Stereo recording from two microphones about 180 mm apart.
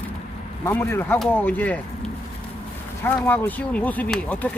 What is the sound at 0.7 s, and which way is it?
Speech, 10° left (ahead or behind).